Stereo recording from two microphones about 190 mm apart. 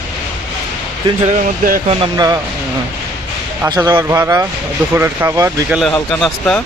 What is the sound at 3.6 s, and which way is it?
Speech, 15° right (ahead or behind).